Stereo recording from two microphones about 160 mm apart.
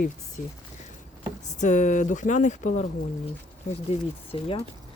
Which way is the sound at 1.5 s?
50° left (ahead or behind).